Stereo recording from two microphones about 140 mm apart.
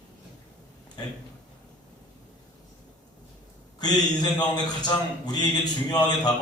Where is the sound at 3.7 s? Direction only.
30° left (ahead or behind).